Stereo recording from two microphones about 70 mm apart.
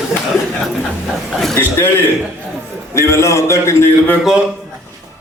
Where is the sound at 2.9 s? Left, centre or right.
Left.